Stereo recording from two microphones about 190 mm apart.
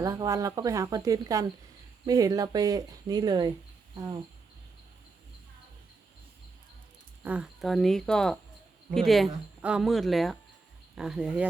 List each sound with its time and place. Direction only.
0.0 s speech: 15° right (ahead or behind)
7.2 s speech: 5° right (ahead or behind)